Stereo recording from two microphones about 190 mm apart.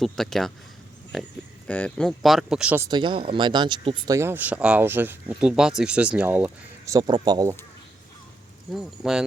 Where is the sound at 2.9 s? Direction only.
25° right (ahead or behind).